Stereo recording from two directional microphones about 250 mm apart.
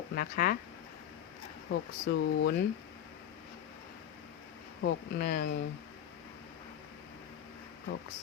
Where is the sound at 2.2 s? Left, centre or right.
Left.